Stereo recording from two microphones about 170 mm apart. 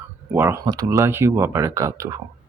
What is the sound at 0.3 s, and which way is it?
Speech, 15° right (ahead or behind).